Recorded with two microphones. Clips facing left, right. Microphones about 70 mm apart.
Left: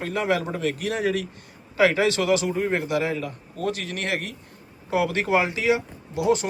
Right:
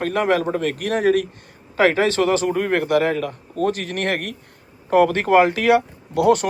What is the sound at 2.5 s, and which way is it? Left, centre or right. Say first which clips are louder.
Speech: right 5 dB; right.